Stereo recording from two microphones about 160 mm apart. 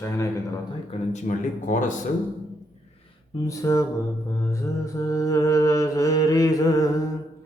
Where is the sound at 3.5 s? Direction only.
15° left (ahead or behind).